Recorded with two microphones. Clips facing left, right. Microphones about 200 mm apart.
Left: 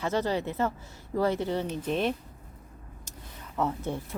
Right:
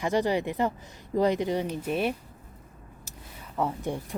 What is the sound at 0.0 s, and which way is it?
Speech, 15° right (ahead or behind).